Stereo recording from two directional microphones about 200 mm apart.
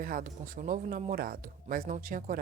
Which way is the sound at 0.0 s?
45° right (ahead or behind).